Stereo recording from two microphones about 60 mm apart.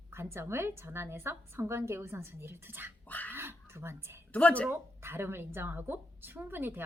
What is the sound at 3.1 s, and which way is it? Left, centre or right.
Speech, left.